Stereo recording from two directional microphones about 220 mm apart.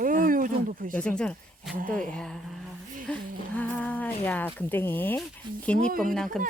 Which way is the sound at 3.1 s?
5° left (ahead or behind).